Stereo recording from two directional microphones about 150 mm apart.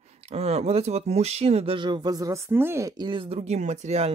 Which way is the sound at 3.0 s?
35° right (ahead or behind).